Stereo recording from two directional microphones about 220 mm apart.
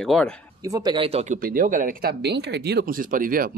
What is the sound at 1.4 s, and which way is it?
Speech, 40° right (ahead or behind).